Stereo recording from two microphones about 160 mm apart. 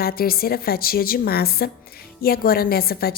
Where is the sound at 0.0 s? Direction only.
70° left (ahead or behind).